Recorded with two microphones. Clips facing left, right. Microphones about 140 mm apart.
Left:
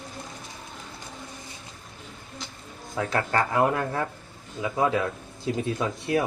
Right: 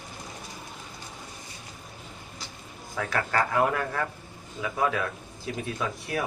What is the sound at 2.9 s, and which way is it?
Speech, 25° left (ahead or behind).